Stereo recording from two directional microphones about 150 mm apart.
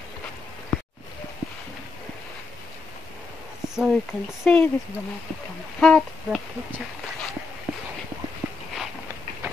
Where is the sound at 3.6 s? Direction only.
5° right (ahead or behind).